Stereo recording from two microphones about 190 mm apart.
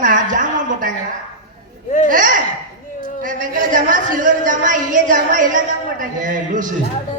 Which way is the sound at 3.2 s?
45° right (ahead or behind).